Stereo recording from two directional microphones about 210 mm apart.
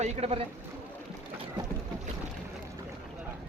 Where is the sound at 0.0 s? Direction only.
30° right (ahead or behind).